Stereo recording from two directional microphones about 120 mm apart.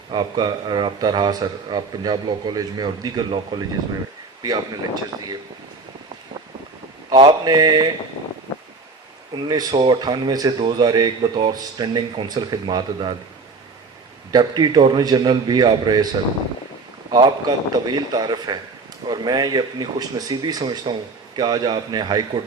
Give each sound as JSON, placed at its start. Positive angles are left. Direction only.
{"t": 0.1, "sound": "a man's voice", "side_deg": -40}
{"t": 7.2, "sound": "a man's voice", "side_deg": -35}
{"t": 9.3, "sound": "a man's voice", "side_deg": -35}
{"t": 14.3, "sound": "a man's voice", "side_deg": -35}
{"t": 17.2, "sound": "a man's voice", "side_deg": -40}